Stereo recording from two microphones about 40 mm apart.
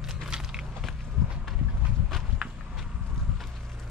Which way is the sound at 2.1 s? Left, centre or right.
Centre.